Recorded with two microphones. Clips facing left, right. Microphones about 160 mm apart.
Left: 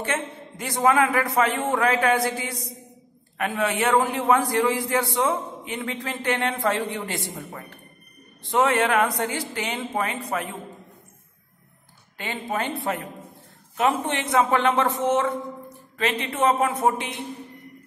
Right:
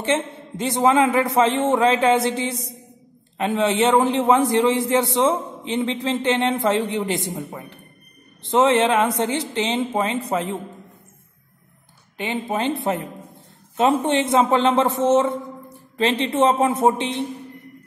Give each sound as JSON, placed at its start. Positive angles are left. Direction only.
{"t": 0.0, "sound": "a man's voice", "side_deg": -25}
{"t": 12.2, "sound": "a man's voice", "side_deg": -20}